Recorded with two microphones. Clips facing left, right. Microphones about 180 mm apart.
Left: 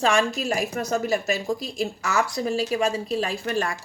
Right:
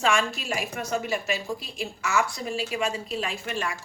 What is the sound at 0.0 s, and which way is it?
A woman's voice, 35° left (ahead or behind).